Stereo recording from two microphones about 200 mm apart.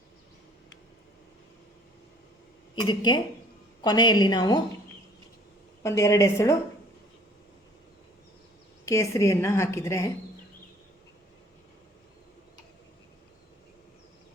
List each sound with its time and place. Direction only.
2.7 s a woman's voice: 20° left (ahead or behind)
5.8 s a woman's voice: 15° left (ahead or behind)
8.9 s a woman's voice: 15° left (ahead or behind)